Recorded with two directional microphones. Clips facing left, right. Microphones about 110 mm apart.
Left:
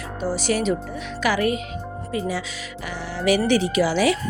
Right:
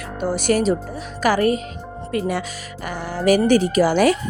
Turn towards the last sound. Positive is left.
turn(degrees=-50)  # may be behind; listen again after turning